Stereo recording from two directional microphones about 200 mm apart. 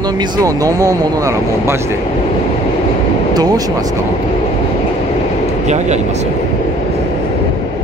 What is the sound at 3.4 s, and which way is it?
Speech, 20° right (ahead or behind).